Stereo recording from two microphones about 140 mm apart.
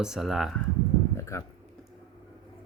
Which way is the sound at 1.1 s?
20° left (ahead or behind).